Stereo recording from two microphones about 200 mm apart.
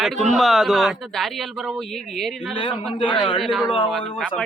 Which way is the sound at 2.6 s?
25° left (ahead or behind).